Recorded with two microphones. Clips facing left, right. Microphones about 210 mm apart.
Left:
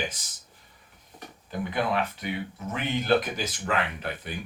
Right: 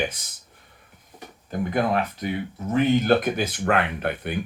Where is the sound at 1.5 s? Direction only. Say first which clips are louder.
Right 5 dB; 45° right (ahead or behind); by 4.3 s 60° right (ahead or behind).